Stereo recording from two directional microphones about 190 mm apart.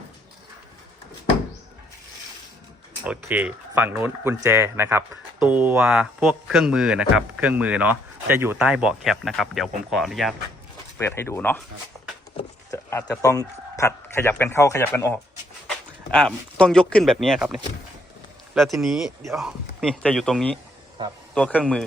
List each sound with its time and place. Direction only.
3.0 s speech: 10° right (ahead or behind)
10.9 s speech: 10° left (ahead or behind)
11.9 s a sound: 10° right (ahead or behind)
12.7 s speech: 15° left (ahead or behind)
21.0 s speech: 25° right (ahead or behind)
21.3 s speech: 5° left (ahead or behind)